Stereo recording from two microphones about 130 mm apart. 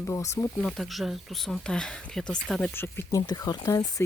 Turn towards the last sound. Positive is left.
turn(degrees=25)  # may be behind; listen again after turning